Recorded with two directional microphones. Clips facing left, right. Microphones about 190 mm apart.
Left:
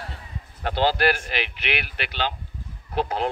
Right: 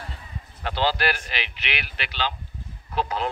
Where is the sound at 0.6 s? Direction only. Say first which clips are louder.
Left 3 dB; 50° left (ahead or behind).